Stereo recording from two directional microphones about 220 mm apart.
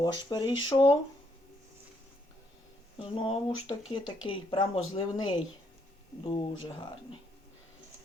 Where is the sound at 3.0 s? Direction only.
25° left (ahead or behind).